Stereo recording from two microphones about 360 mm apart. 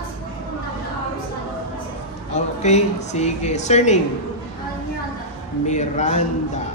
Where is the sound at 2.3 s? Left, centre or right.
Centre.